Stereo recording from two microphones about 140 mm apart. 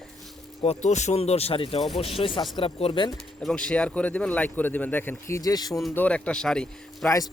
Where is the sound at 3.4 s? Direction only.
5° left (ahead or behind); by 5.8 s 30° left (ahead or behind).